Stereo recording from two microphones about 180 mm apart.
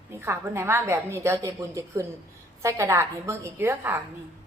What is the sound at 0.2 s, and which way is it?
A woman's voice, 15° right (ahead or behind).